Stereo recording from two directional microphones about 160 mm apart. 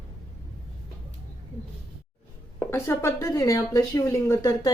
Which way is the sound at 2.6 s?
15° left (ahead or behind).